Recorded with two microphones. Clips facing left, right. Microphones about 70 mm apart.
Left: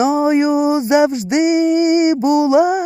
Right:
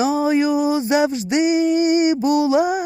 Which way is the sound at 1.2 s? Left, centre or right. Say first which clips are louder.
Left 3 dB; left.